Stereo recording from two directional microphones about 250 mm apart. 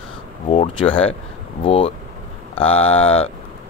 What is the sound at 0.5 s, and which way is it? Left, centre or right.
Speech, left.